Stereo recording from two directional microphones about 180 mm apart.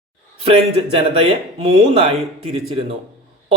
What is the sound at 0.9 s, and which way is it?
A man's voice, 30° right (ahead or behind).